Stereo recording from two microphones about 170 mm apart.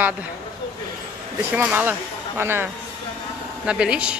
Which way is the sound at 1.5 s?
10° right (ahead or behind).